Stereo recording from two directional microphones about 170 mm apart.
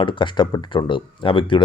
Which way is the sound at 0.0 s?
30° left (ahead or behind).